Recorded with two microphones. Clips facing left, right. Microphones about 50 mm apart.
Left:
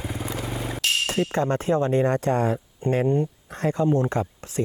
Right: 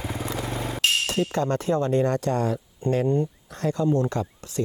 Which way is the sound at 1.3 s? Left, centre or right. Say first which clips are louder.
Left 2 dB; left.